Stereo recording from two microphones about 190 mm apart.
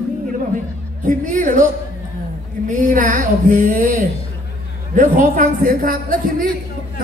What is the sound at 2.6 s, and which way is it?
Speech, 45° right (ahead or behind).